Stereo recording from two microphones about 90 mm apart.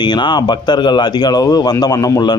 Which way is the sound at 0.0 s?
55° left (ahead or behind).